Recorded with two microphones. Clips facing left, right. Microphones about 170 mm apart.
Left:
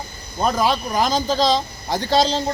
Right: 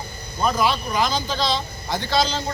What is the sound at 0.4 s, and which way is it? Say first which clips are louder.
A man's voice: left 2 dB; 40° left (ahead or behind).